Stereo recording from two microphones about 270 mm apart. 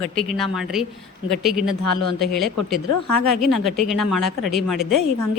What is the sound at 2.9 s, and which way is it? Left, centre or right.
Speech, left.